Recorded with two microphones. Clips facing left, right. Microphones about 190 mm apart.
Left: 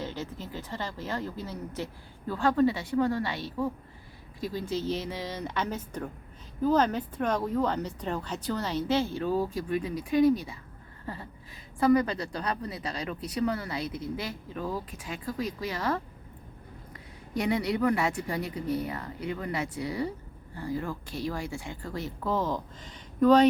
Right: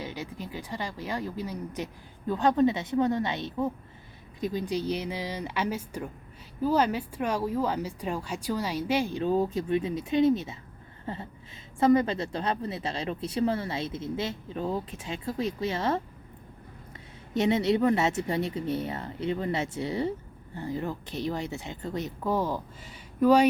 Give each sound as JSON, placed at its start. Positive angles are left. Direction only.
{"t": 0.0, "sound": "speech", "side_deg": -15}
{"t": 11.0, "sound": "a sound", "side_deg": -25}
{"t": 11.8, "sound": "speech", "side_deg": -25}
{"t": 17.3, "sound": "speech", "side_deg": -25}